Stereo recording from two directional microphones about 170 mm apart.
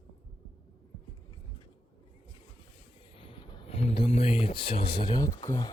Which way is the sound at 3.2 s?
30° left (ahead or behind).